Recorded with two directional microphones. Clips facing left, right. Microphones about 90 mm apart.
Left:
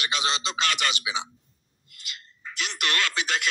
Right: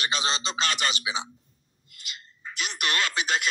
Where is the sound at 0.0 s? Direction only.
25° right (ahead or behind).